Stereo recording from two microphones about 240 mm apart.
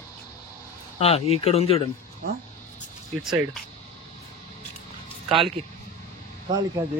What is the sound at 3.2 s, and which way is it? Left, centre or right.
Speech, centre.